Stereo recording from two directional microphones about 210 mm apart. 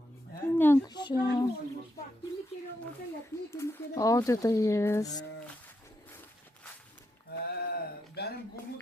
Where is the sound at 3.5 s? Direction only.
15° left (ahead or behind).